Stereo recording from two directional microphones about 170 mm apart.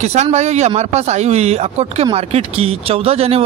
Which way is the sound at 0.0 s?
40° right (ahead or behind).